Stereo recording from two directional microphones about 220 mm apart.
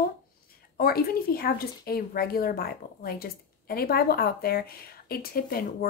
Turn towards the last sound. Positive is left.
turn(degrees=40)  # may be behind; listen again after turning